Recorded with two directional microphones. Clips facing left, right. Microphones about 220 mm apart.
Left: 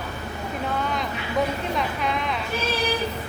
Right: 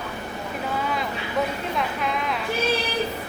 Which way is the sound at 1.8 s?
Centre (ahead or behind).